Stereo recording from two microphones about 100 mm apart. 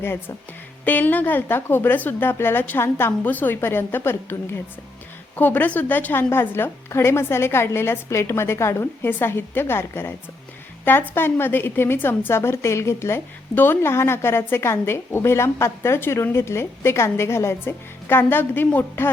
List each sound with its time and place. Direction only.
0.0 s a woman's voice: 25° left (ahead or behind)